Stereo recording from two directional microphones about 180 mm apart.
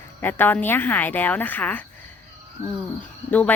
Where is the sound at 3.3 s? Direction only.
10° left (ahead or behind).